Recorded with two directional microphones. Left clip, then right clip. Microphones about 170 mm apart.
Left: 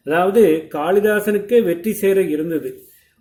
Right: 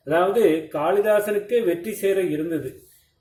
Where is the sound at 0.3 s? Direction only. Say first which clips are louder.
Left 5 dB; 45° left (ahead or behind).